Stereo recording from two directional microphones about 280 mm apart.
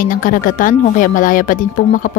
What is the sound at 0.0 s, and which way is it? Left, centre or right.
Speech, left.